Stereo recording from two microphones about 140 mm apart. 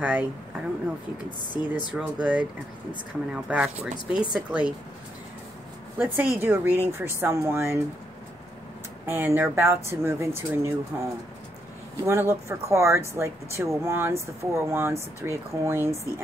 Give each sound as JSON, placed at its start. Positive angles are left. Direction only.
{"t": 0.0, "sound": "speech", "side_deg": -10}
{"t": 1.1, "sound": "speech", "side_deg": 30}
{"t": 1.9, "sound": "speech", "side_deg": -10}
{"t": 3.4, "sound": "speech", "side_deg": -5}
{"t": 5.9, "sound": "speech", "side_deg": -15}
{"t": 9.0, "sound": "speech", "side_deg": -15}